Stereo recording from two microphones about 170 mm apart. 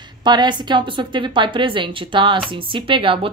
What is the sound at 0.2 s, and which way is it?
A woman's voice, 25° right (ahead or behind).